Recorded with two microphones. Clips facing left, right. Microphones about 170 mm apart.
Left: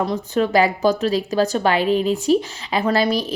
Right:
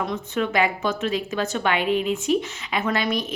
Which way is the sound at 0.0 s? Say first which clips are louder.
Left 5 dB; 35° left (ahead or behind).